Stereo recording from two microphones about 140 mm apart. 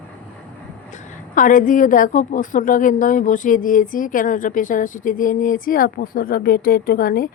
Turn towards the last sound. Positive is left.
turn(degrees=90)